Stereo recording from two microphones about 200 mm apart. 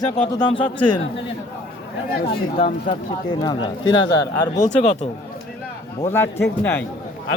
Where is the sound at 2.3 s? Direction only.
25° left (ahead or behind).